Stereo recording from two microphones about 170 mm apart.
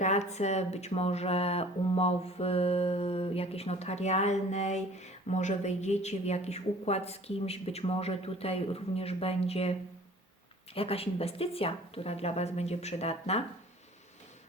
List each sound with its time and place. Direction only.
0.0 s speech: 40° left (ahead or behind)
10.8 s speech: 35° left (ahead or behind)